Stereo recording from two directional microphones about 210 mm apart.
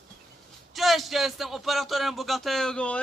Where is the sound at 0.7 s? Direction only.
Centre (ahead or behind).